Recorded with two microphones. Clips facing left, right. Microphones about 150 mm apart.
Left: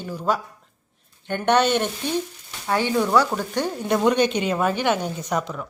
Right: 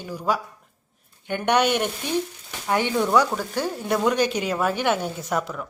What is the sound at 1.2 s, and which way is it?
Speech, 10° right (ahead or behind).